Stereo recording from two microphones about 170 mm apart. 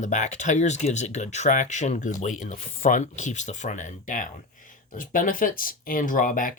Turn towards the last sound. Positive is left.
turn(degrees=55)  # may be behind; listen again after turning